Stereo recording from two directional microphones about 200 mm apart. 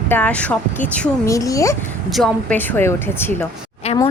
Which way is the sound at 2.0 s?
Centre (ahead or behind).